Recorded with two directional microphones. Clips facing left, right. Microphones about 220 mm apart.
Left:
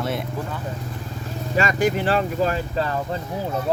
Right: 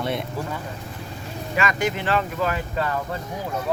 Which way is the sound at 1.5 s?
35° left (ahead or behind).